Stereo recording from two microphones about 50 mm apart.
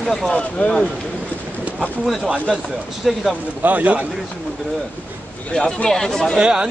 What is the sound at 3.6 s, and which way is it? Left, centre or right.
Speech, right.